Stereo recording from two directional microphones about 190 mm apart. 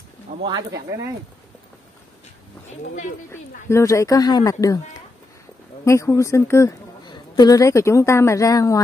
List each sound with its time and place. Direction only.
0.4 s speech: 25° right (ahead or behind)
3.3 s a woman's voice: 15° left (ahead or behind)
5.9 s a woman's voice: 15° left (ahead or behind)